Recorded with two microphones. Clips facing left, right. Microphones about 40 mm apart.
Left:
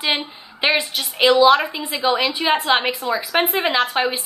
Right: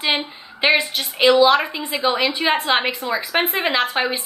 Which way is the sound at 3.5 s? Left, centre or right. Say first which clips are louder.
Left 1 dB; centre.